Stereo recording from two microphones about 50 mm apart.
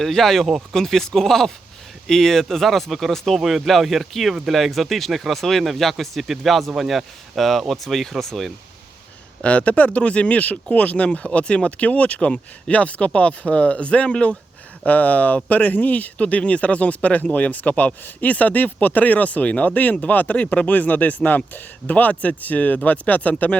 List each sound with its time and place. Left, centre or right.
0.0 s speech: centre
9.4 s speech: left